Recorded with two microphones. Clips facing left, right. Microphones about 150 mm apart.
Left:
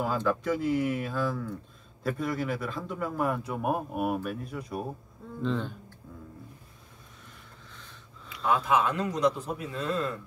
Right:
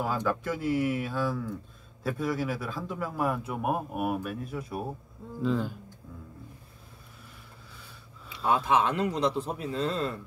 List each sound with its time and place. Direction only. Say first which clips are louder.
0.3 s a man's voice: left 2 dB; centre (ahead or behind)
8.5 s a man's voice: even; 25° right (ahead or behind)